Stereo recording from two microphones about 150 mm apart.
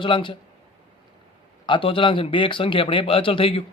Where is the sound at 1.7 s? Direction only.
35° left (ahead or behind).